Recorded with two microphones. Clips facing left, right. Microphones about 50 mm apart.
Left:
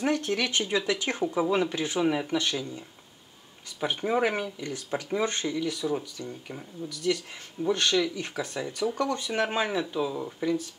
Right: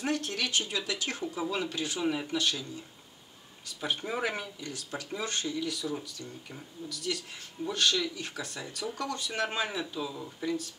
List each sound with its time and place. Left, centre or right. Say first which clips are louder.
0.0 s speech: left 5 dB; centre
4.6 s speech: left 7 dB; left